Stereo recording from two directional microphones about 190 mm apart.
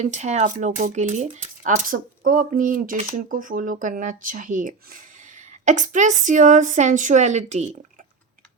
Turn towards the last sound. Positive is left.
turn(degrees=-35)  # may be behind; listen again after turning